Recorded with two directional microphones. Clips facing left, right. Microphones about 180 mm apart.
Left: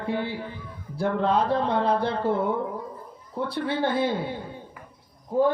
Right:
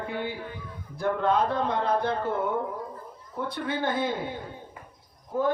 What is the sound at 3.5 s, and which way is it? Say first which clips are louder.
Speech: left 3 dB; 30° left (ahead or behind).